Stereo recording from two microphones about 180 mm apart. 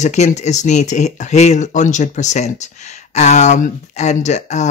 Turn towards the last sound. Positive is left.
turn(degrees=40)  # may be behind; listen again after turning